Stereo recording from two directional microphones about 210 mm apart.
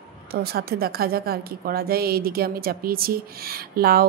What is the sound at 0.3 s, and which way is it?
A woman's voice, 45° right (ahead or behind).